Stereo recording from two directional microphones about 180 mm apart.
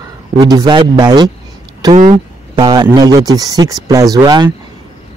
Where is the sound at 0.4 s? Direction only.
20° right (ahead or behind).